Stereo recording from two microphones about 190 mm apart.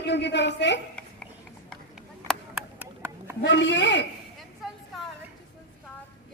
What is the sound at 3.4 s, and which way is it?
Speech, 70° left (ahead or behind).